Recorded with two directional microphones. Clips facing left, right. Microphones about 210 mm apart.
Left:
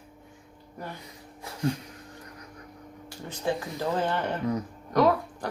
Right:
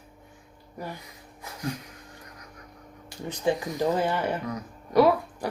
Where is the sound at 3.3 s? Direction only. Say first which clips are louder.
Right 3 dB; 15° right (ahead or behind).